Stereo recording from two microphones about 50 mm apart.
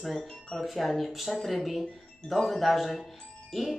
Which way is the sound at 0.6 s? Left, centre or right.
Centre.